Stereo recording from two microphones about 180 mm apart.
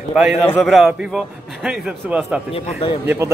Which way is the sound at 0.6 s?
Centre (ahead or behind).